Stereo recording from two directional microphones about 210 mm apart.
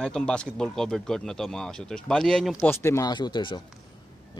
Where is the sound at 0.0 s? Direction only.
5° left (ahead or behind).